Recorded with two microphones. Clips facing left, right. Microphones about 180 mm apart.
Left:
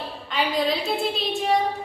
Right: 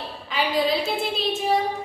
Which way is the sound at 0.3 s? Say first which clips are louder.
Right 1 dB; centre (ahead or behind).